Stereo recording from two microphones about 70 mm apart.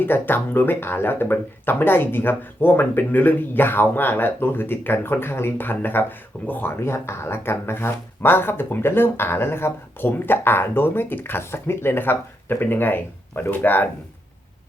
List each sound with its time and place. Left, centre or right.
0.0 s speech: left